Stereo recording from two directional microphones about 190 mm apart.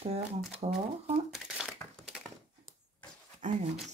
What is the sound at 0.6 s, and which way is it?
Speech, 30° right (ahead or behind).